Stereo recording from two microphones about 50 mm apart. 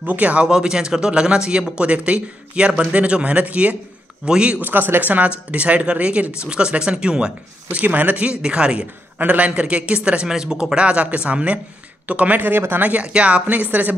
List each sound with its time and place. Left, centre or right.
0.0 s speech: right
0.5 s speech: centre
4.6 s speech: right; by 7.8 s centre
7.8 s speech: right
8.4 s speech: centre
9.2 s speech: right
12.8 s speech: right